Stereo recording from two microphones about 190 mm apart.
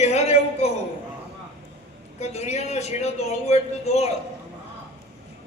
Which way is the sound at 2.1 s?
35° left (ahead or behind).